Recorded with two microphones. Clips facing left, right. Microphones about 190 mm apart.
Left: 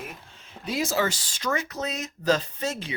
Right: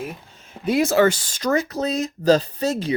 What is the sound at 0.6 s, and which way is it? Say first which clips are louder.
Speech: right 9 dB; 60° right (ahead or behind).